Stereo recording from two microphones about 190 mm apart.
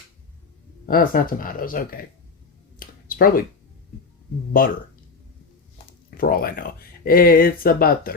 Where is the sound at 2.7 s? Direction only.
50° left (ahead or behind).